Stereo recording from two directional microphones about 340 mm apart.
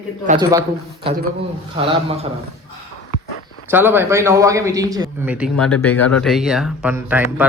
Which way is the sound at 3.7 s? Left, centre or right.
Centre.